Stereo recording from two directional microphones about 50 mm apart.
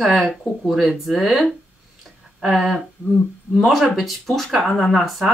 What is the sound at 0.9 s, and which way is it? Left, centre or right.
Speech, centre.